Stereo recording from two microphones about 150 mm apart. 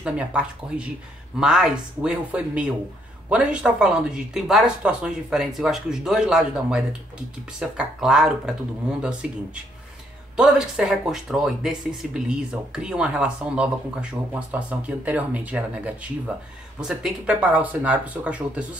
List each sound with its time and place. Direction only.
0.0 s speech: 10° right (ahead or behind)